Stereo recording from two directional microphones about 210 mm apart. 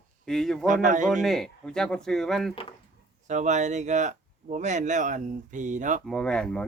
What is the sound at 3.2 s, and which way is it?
Speech, 35° right (ahead or behind).